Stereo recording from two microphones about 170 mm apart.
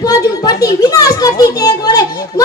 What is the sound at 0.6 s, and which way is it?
Children playing, 20° left (ahead or behind).